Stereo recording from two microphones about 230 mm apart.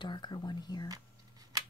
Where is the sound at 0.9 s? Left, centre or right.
Centre.